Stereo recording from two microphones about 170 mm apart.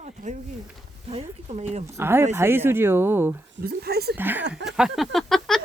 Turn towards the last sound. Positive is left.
turn(degrees=0)  # may be behind; listen again after turning